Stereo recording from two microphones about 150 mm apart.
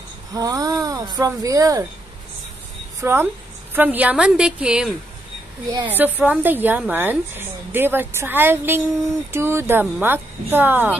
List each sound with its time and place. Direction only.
0.3 s speech: 25° right (ahead or behind)
3.0 s a woman's voice: 15° right (ahead or behind)